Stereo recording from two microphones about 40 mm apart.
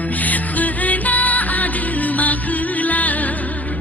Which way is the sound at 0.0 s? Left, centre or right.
Left.